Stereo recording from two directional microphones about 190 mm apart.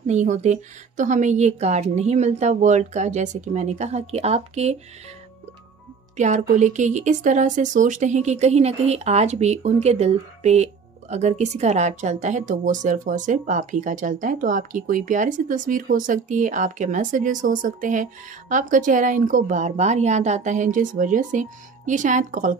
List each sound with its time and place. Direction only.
0.0 s speech: 40° right (ahead or behind)
6.1 s speech: 40° right (ahead or behind)